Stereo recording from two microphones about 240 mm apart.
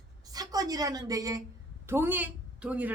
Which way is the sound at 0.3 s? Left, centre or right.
Centre.